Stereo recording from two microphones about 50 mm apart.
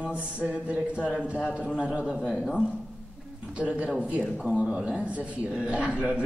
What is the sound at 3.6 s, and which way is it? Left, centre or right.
A man's voice, right.